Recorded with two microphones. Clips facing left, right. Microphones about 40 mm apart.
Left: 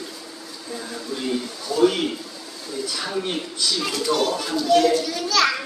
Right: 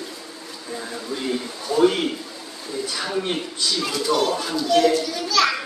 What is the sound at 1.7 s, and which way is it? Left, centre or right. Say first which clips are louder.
Speech: right 1 dB; right.